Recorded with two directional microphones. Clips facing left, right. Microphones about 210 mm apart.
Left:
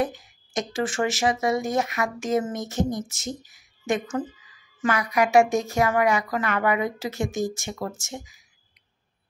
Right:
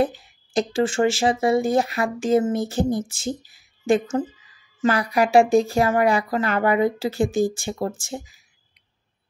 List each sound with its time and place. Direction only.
0.0 s speech: 30° right (ahead or behind)